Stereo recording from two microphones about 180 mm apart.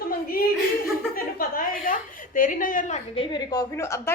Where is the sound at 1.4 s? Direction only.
50° left (ahead or behind).